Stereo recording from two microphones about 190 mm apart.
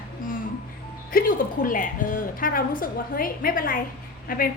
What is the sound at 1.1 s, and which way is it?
A woman's voice, 50° left (ahead or behind).